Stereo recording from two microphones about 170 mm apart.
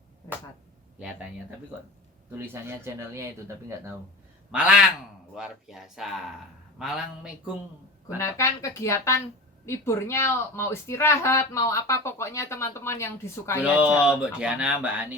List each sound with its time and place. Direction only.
0.9 s speech: 10° right (ahead or behind)
4.5 s speech: 5° right (ahead or behind)
8.0 s speech: 20° left (ahead or behind)
13.6 s speech: 10° right (ahead or behind)